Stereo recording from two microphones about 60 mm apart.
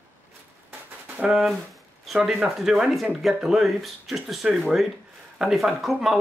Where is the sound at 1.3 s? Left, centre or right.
Centre.